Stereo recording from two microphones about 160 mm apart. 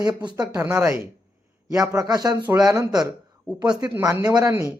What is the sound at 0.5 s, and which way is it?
Speech, 15° right (ahead or behind).